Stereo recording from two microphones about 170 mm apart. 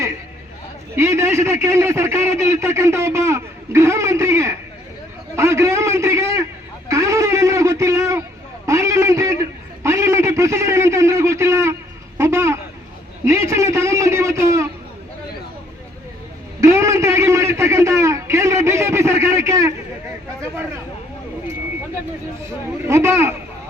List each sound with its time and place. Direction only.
0.9 s a man's voice: 15° right (ahead or behind)
5.4 s a sound: 15° right (ahead or behind)
9.8 s a man's voice: 15° right (ahead or behind)
12.1 s a sound: 15° right (ahead or behind)
13.2 s a man's voice: 15° right (ahead or behind)
16.6 s a man's voice: 15° right (ahead or behind)
22.4 s a man's voice: 15° right (ahead or behind)